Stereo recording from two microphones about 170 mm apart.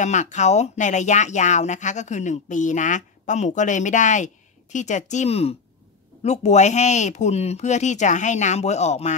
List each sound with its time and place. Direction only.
0.0 s speech: 45° left (ahead or behind)